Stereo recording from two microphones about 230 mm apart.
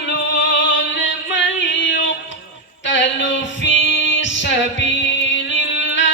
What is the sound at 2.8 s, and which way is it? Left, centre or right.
Music, left.